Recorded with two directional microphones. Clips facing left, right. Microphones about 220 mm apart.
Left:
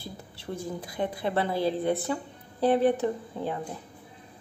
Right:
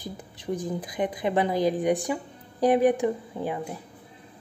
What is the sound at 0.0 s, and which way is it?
A woman's voice, 15° right (ahead or behind).